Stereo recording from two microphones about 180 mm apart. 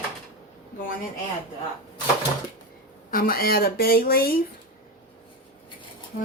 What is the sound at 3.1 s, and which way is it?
Speech, 55° left (ahead or behind).